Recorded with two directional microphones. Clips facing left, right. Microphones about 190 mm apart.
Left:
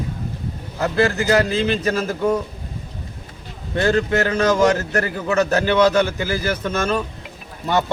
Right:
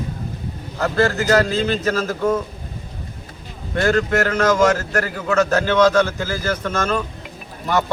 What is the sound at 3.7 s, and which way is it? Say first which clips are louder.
A man's voice: even; 20° left (ahead or behind).